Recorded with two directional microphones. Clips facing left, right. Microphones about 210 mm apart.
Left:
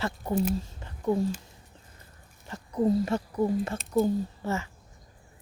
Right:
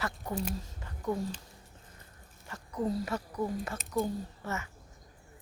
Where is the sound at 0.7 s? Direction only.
30° left (ahead or behind).